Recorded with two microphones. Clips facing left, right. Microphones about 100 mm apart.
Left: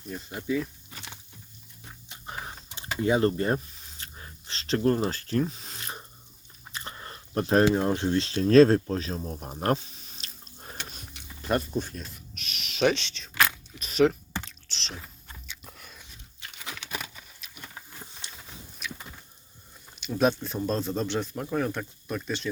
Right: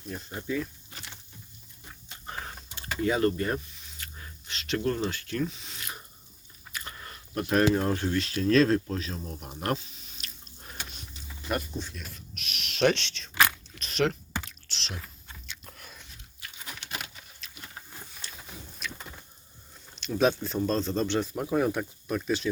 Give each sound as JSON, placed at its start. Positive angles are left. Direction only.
{"t": 0.3, "sound": "a sound", "side_deg": 10}
{"t": 5.0, "sound": "speech", "side_deg": 35}
{"t": 11.1, "sound": "a sound", "side_deg": 65}
{"t": 12.3, "sound": "owl", "side_deg": 0}
{"t": 13.4, "sound": "biting", "side_deg": 5}
{"t": 14.3, "sound": "computer keyboard", "side_deg": 0}
{"t": 15.0, "sound": "biting", "side_deg": 5}
{"t": 16.4, "sound": "crumpling", "side_deg": 25}
{"t": 17.4, "sound": "a sound", "side_deg": 5}
{"t": 18.2, "sound": "a sound", "side_deg": 20}
{"t": 18.8, "sound": "vehicle", "side_deg": 0}
{"t": 20.0, "sound": "speech", "side_deg": 0}